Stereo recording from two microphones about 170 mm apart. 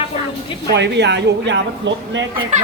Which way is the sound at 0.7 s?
90° right.